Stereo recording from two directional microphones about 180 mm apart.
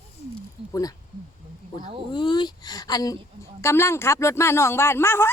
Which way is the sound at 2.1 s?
25° left (ahead or behind).